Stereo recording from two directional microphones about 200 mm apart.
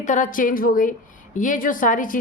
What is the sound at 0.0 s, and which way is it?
A woman's voice, 40° left (ahead or behind).